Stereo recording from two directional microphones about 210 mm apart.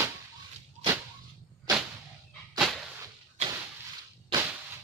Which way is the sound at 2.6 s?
Centre (ahead or behind).